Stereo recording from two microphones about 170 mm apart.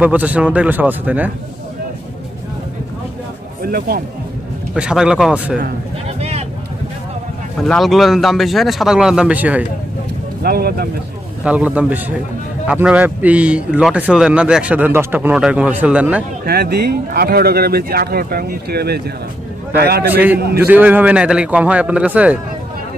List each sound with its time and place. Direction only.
0.0 s speech: 10° right (ahead or behind)
3.6 s speech: 60° right (ahead or behind)
4.7 s speech: 5° right (ahead or behind)
6.1 s vehicle: 40° right (ahead or behind)
7.6 s speech: centre (ahead or behind)
10.4 s speech: 65° right (ahead or behind)
11.4 s speech: 10° right (ahead or behind)
16.4 s a man's voice: 70° right (ahead or behind)
20.5 s speech: 10° right (ahead or behind)